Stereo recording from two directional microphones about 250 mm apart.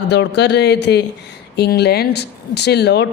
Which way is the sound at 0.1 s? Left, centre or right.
Left.